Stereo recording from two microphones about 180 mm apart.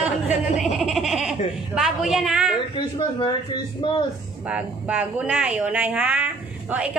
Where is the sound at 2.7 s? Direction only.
25° left (ahead or behind).